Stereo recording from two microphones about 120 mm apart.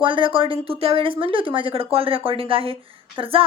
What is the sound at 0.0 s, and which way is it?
Speech, 45° right (ahead or behind).